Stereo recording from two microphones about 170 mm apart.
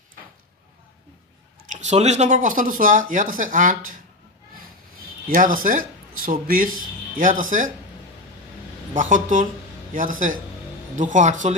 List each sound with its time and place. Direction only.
1.7 s speech: 45° right (ahead or behind)
5.3 s speech: 55° right (ahead or behind)
8.9 s speech: 50° right (ahead or behind)